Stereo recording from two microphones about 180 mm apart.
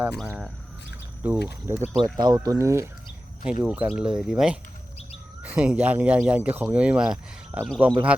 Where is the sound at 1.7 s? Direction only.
10° right (ahead or behind).